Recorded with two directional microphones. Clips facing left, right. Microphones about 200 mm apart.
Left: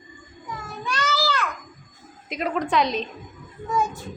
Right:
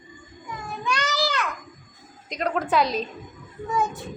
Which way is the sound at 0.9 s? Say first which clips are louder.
Left 3 dB; 15° right (ahead or behind).